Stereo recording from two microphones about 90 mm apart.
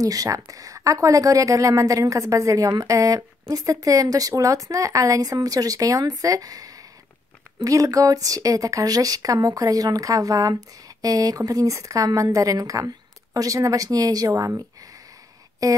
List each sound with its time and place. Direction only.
0.0 s a woman's voice: 40° right (ahead or behind)
15.6 s a woman's voice: 40° right (ahead or behind)